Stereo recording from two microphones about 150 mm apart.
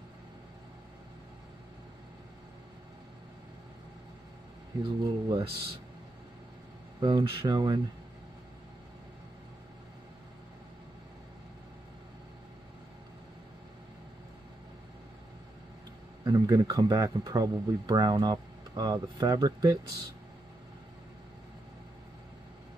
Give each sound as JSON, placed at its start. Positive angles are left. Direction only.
{"t": 4.8, "sound": "speech", "side_deg": -35}
{"t": 7.0, "sound": "speech", "side_deg": -30}
{"t": 16.3, "sound": "speech", "side_deg": -25}